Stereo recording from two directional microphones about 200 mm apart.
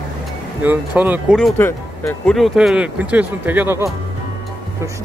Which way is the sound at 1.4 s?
10° left (ahead or behind).